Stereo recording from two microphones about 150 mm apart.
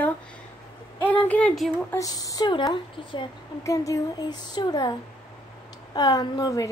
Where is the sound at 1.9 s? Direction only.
25° left (ahead or behind).